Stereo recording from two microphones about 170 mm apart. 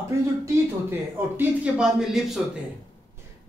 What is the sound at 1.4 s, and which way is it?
Speech, 5° right (ahead or behind).